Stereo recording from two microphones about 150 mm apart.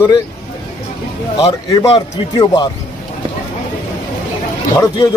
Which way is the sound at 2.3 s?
30° left (ahead or behind).